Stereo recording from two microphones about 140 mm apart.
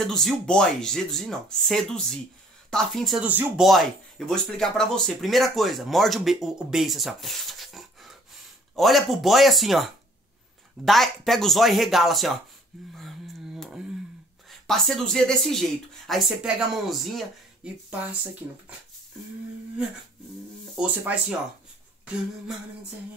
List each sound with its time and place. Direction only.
0.0 s speech: centre (ahead or behind)
3.3 s speech: 10° right (ahead or behind)
4.3 s speech: 5° left (ahead or behind)
12.9 s a sound: centre (ahead or behind)
14.5 s speech: 5° left (ahead or behind)
20.7 s speech: 10° right (ahead or behind)